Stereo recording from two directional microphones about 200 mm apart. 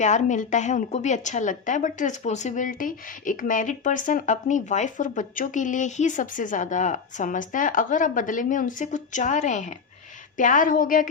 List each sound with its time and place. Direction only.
0.0 s a woman's voice: 35° left (ahead or behind)